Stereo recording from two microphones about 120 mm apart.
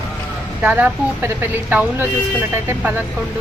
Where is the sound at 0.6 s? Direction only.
15° right (ahead or behind).